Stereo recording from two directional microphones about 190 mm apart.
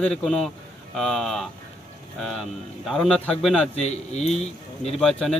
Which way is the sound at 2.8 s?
Centre (ahead or behind).